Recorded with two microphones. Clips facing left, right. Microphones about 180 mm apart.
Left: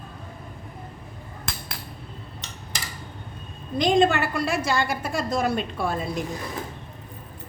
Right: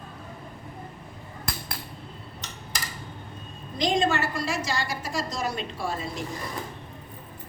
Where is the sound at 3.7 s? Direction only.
55° left (ahead or behind).